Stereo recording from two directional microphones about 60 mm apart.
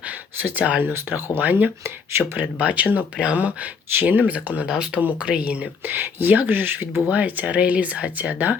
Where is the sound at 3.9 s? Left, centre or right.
Right.